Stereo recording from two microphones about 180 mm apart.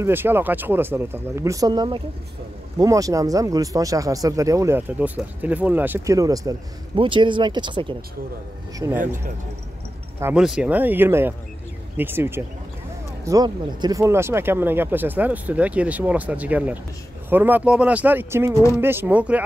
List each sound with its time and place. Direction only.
0.0 s speech: 10° right (ahead or behind)
8.7 s speech: 15° right (ahead or behind)
10.2 s speech: 5° right (ahead or behind)